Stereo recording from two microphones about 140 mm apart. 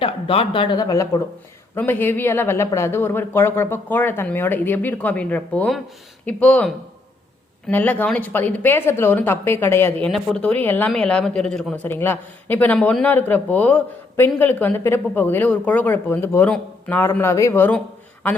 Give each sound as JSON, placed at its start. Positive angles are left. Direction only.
{"t": 0.0, "sound": "speech", "side_deg": 40}
{"t": 1.7, "sound": "speech", "side_deg": 15}
{"t": 7.7, "sound": "speech", "side_deg": 15}
{"t": 17.7, "sound": "a sound", "side_deg": 10}